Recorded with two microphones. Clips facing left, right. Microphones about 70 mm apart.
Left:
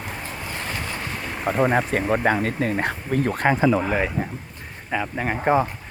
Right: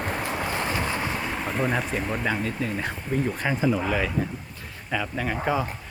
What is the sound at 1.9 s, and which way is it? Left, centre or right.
Speech, left.